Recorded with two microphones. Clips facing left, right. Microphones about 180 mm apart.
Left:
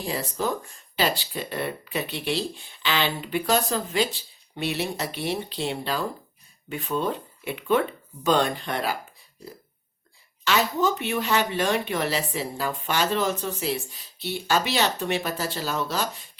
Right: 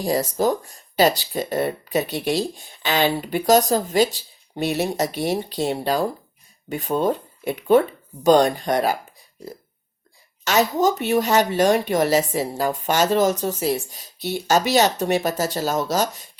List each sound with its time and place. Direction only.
0.0 s speech: 40° right (ahead or behind)
10.4 s speech: 45° right (ahead or behind)